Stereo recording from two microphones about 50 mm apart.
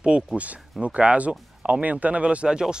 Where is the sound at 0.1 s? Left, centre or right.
Right.